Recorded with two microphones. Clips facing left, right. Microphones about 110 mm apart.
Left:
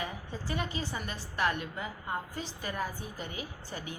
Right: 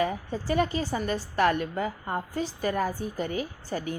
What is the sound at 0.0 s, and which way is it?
A woman's voice, 45° right (ahead or behind).